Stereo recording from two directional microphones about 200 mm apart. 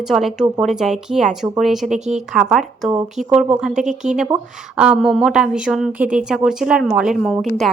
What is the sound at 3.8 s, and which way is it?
Speech, 35° right (ahead or behind).